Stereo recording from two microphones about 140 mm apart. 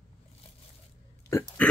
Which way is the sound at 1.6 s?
10° left (ahead or behind).